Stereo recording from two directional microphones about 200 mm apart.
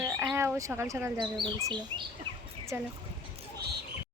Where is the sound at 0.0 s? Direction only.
10° right (ahead or behind).